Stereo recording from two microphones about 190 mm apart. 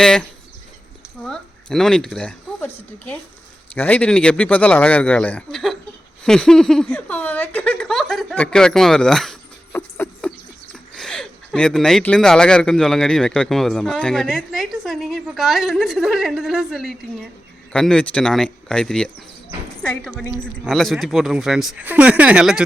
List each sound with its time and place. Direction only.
0.0 s speech: 5° left (ahead or behind)